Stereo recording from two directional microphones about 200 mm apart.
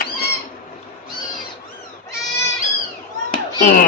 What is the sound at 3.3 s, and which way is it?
Children playing, 45° left (ahead or behind).